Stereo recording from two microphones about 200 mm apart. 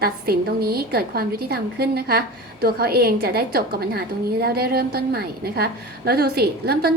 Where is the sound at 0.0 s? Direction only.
50° right (ahead or behind).